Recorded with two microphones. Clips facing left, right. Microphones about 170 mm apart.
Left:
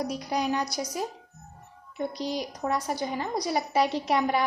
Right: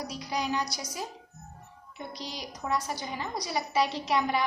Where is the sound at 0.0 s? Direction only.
55° left (ahead or behind).